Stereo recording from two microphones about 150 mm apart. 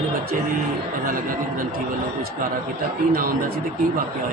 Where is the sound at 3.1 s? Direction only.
75° right (ahead or behind).